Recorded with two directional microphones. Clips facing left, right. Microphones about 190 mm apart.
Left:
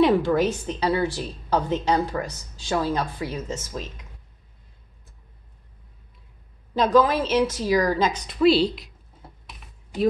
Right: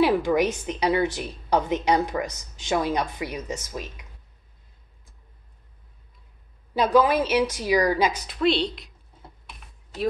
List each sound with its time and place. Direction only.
0.0 s a woman's voice: 10° right (ahead or behind)
6.7 s a woman's voice: 10° right (ahead or behind)
8.3 s a woman's voice: centre (ahead or behind)